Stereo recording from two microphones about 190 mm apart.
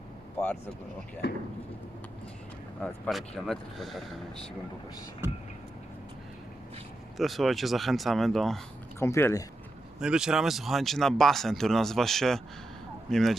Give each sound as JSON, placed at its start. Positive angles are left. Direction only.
{"t": 1.2, "sound": "speech", "side_deg": 60}
{"t": 2.8, "sound": "speech", "side_deg": 0}
{"t": 7.2, "sound": "speech", "side_deg": 0}
{"t": 9.0, "sound": "speech", "side_deg": 15}
{"t": 10.0, "sound": "speech", "side_deg": -5}